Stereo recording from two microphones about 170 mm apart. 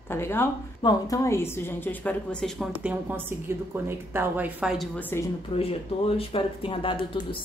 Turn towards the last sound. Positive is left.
turn(degrees=30)  # may be behind; listen again after turning